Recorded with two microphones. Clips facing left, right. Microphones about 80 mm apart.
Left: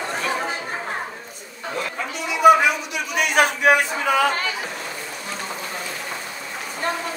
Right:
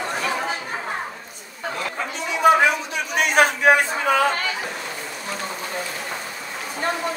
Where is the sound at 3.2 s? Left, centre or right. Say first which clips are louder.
Right 1 dB; right.